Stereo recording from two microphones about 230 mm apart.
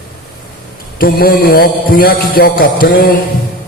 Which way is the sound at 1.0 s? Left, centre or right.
Left.